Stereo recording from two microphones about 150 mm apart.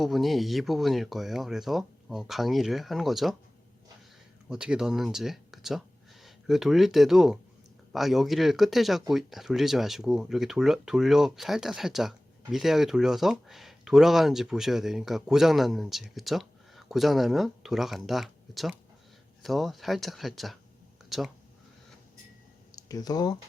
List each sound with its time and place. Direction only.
0.0 s speech: centre (ahead or behind)
4.4 s speech: 5° right (ahead or behind)
22.7 s speech: 25° left (ahead or behind)